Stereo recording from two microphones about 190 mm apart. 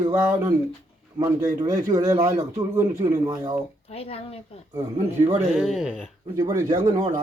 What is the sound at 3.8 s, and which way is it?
Speech, 30° left (ahead or behind).